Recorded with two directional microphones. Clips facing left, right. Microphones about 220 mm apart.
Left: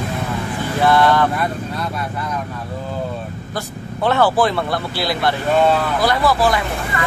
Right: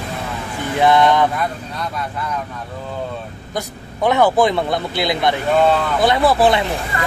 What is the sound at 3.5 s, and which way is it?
Speech, 15° right (ahead or behind).